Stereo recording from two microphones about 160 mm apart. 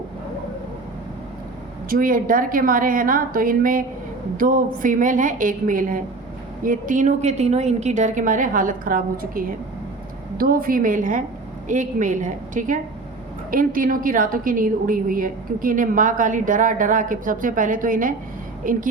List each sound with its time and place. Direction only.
1.9 s a woman's voice: 60° right (ahead or behind)